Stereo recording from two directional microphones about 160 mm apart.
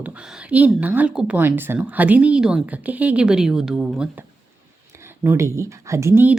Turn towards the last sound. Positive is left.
turn(degrees=-15)  # may be behind; listen again after turning